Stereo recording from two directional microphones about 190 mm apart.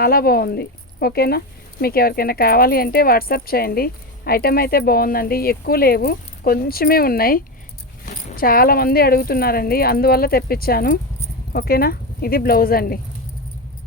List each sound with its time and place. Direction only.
0.0 s speech: 55° left (ahead or behind)